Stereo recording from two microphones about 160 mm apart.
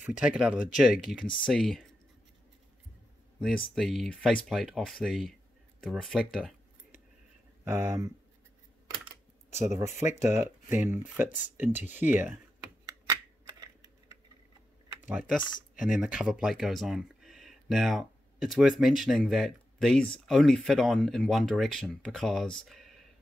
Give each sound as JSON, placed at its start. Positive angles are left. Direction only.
{"t": 0.0, "sound": "speech", "side_deg": -5}
{"t": 3.3, "sound": "speech", "side_deg": 5}
{"t": 7.6, "sound": "speech", "side_deg": -15}
{"t": 9.5, "sound": "speech", "side_deg": 45}
{"t": 9.8, "sound": "speech", "side_deg": -15}
{"t": 12.8, "sound": "computer keyboard", "side_deg": -20}
{"t": 15.0, "sound": "speech", "side_deg": -5}